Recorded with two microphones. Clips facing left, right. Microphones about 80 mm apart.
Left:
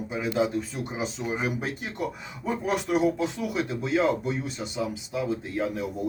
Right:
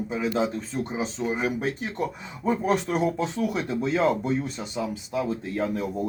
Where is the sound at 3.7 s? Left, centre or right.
Right.